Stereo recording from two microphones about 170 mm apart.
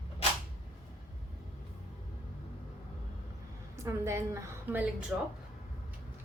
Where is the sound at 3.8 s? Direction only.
15° right (ahead or behind).